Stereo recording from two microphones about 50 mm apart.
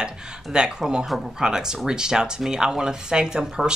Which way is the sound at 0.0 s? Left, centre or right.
Centre.